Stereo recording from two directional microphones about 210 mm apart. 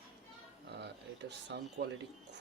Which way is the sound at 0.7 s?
55° right (ahead or behind).